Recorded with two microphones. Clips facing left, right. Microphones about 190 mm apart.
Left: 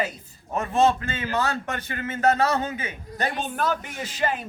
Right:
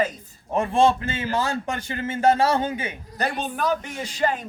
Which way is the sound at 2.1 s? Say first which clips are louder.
Right 2 dB; 30° right (ahead or behind).